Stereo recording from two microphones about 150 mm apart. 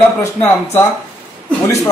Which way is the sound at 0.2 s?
20° left (ahead or behind).